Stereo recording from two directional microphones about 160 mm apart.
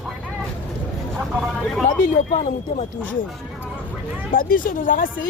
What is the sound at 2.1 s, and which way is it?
Speech, 50° left (ahead or behind).